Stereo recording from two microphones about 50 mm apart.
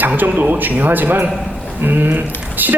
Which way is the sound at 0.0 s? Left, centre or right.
Right.